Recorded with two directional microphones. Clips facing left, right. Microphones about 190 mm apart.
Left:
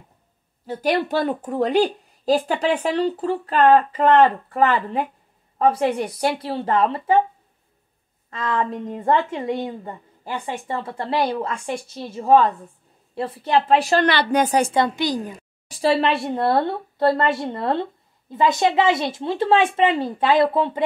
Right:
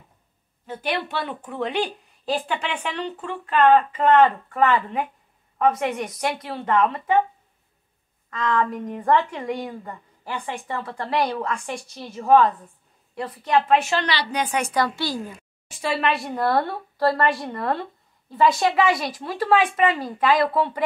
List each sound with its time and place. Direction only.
0.7 s speech: 40° left (ahead or behind)
8.3 s a woman's voice: 25° left (ahead or behind)
14.0 s a woman's voice: 50° left (ahead or behind)
14.7 s speech: 20° left (ahead or behind)
15.7 s a woman's voice: 35° left (ahead or behind)